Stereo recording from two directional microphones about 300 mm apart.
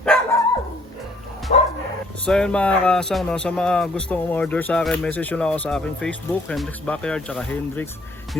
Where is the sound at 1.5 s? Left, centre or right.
Left.